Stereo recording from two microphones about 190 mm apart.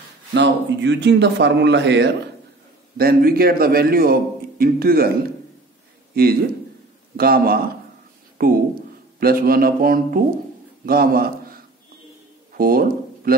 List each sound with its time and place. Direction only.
0.3 s a man's voice: 65° right (ahead or behind)
3.0 s a man's voice: 50° right (ahead or behind)
7.2 s a man's voice: 50° right (ahead or behind)
12.5 s a sound: 50° right (ahead or behind)